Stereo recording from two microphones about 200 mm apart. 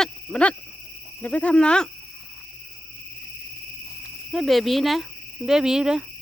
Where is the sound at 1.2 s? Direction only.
5° left (ahead or behind).